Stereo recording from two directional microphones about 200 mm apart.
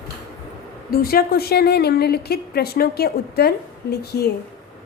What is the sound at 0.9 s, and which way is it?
A woman's voice, 50° left (ahead or behind).